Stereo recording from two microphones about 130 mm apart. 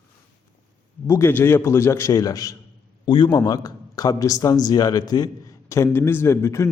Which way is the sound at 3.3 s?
30° left (ahead or behind).